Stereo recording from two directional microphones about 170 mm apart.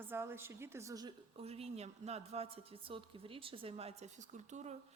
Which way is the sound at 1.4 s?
35° right (ahead or behind).